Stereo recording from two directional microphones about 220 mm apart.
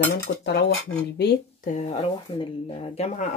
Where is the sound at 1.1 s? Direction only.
50° left (ahead or behind).